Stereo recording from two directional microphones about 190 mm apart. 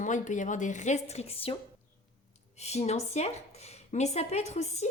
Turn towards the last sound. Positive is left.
turn(degrees=35)  # may be behind; listen again after turning